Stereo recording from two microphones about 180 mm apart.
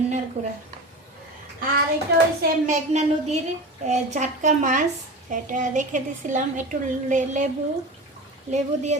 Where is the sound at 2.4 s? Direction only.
45° right (ahead or behind).